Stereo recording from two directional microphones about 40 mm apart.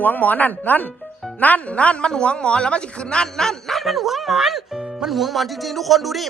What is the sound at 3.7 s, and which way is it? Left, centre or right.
Speech, centre.